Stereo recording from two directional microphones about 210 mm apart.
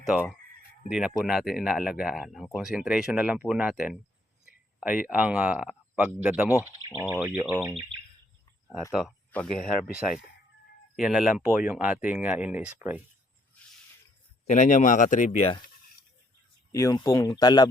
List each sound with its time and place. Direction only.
0.9 s speech: 5° right (ahead or behind)
8.9 s speech: centre (ahead or behind)
10.9 s speech: centre (ahead or behind)
14.4 s speech: 35° left (ahead or behind)
16.7 s speech: 15° left (ahead or behind)